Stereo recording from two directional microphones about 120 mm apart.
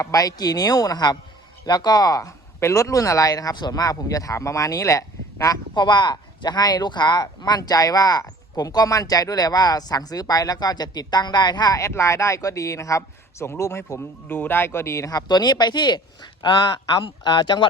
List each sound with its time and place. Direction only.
0.0 s speech: 30° left (ahead or behind)